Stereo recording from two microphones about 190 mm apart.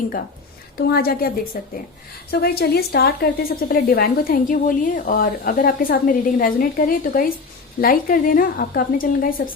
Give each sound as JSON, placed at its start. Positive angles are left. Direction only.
{"t": 0.8, "sound": "a woman's voice", "side_deg": 55}